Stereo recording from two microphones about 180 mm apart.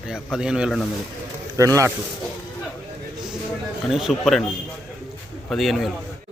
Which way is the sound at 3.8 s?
Centre (ahead or behind).